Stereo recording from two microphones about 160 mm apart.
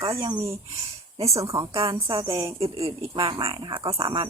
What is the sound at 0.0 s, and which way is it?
Speech, 20° right (ahead or behind).